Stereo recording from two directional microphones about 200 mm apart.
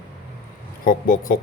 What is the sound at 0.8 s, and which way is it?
Speech, 45° left (ahead or behind).